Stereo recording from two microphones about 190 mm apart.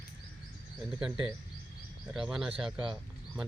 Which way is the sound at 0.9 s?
5° right (ahead or behind).